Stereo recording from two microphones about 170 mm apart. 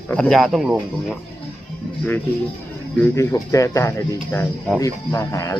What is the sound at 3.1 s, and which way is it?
A man's voice, 20° left (ahead or behind).